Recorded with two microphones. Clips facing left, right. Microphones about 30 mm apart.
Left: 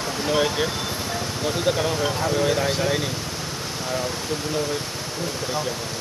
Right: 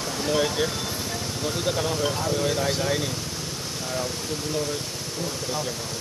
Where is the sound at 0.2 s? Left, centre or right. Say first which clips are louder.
Left 2 dB; centre.